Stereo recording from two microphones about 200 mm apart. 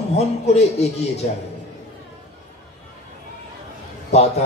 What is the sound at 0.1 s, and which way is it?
Speech, 30° left (ahead or behind).